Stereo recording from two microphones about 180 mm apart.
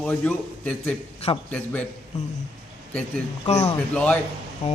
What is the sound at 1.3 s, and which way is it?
Speech, 30° left (ahead or behind).